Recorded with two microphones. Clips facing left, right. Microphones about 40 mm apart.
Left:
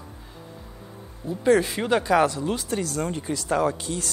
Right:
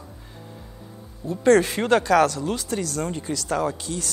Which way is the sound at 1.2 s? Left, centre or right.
Centre.